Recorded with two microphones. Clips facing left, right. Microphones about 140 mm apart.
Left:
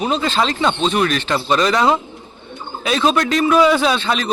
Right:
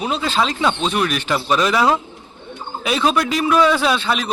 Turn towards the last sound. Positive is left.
turn(degrees=-5)  # may be behind; listen again after turning